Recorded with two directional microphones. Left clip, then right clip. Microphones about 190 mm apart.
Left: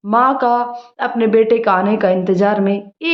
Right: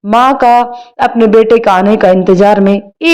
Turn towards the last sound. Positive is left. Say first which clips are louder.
# right 8 dB
turn(degrees=-35)  # may be behind; listen again after turning